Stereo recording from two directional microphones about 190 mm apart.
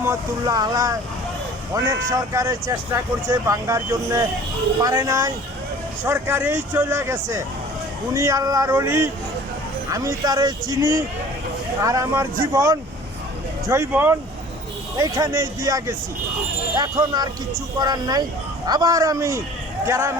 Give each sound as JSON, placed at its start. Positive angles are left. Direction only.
{"t": 0.0, "sound": "speech", "side_deg": -15}